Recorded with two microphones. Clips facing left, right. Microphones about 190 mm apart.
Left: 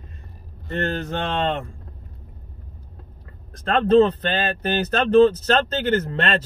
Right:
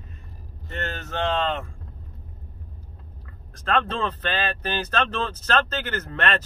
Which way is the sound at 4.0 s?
30° left (ahead or behind).